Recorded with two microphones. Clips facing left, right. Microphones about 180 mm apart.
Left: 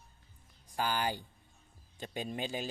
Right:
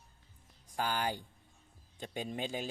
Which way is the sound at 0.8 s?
5° left (ahead or behind).